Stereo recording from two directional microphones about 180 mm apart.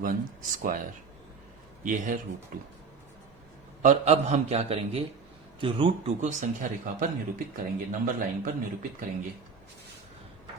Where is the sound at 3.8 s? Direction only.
40° right (ahead or behind).